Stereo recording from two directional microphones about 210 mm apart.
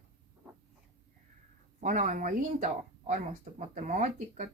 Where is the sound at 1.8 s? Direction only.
35° right (ahead or behind).